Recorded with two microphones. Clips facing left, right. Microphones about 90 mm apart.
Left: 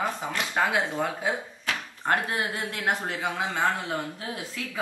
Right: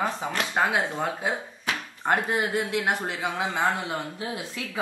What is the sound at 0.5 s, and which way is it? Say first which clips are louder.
Speech: even; 10° right (ahead or behind).